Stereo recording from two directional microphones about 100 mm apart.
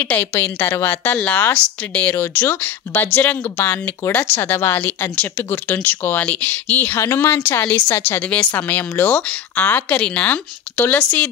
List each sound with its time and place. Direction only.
0.0 s speech: 20° left (ahead or behind)